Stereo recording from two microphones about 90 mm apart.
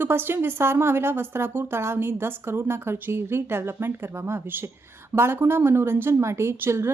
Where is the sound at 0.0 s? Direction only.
25° right (ahead or behind).